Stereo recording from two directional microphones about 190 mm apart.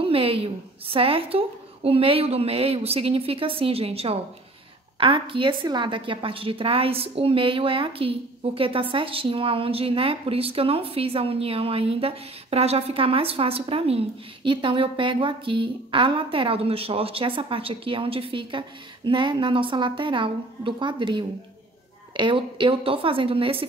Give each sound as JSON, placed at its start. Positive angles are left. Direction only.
{"t": 0.0, "sound": "a woman's voice", "side_deg": -30}